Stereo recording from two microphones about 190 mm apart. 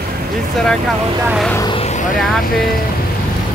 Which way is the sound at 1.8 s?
40° left (ahead or behind).